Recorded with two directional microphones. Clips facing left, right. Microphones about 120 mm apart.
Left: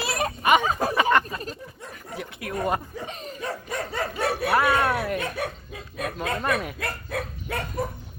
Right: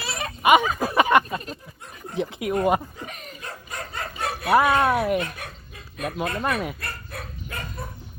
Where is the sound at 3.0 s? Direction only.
30° left (ahead or behind).